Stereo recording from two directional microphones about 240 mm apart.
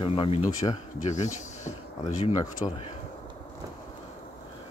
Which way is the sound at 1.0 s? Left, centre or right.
Left.